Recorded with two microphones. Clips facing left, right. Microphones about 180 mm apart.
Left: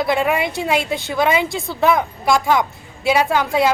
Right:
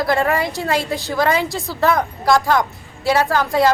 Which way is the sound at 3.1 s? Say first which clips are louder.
Even; 15° left (ahead or behind).